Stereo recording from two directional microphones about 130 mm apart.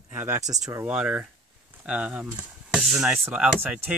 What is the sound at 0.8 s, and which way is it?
Speech, 10° right (ahead or behind).